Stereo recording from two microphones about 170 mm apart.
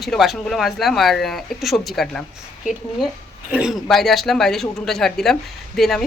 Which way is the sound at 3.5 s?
5° right (ahead or behind).